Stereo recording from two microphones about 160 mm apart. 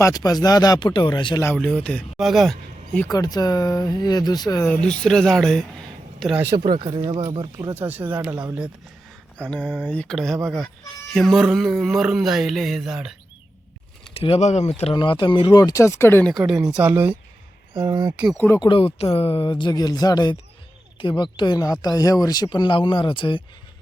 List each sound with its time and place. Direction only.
0.0 s speech: 20° left (ahead or behind)
1.5 s speech: 5° left (ahead or behind)
3.1 s speech: 25° left (ahead or behind)
4.6 s speech: 5° left (ahead or behind)
6.7 s speech: 30° right (ahead or behind)
7.7 s speech: 10° right (ahead or behind)
9.4 s mantra: 10° left (ahead or behind)
10.4 s speech: centre (ahead or behind)
14.1 s speech: 35° left (ahead or behind); by 16.3 s 15° left (ahead or behind)
16.7 s speech: 10° right (ahead or behind)
17.7 s speech: 25° right (ahead or behind)
18.3 s mantra: 15° left (ahead or behind)
18.6 s speech: 35° left (ahead or behind)